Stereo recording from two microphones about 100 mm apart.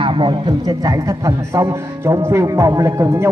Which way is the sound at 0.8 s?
30° right (ahead or behind).